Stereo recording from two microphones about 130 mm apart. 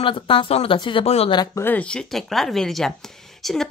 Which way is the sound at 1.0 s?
55° left (ahead or behind).